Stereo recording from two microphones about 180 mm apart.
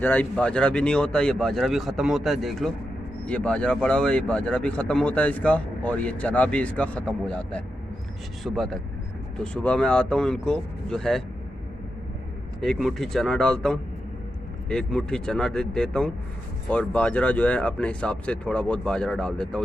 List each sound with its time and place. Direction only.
0.0 s speech: 10° left (ahead or behind)
12.5 s speech: centre (ahead or behind)